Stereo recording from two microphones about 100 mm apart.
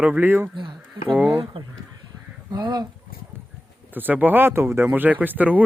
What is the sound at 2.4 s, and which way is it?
Speech, 45° right (ahead or behind).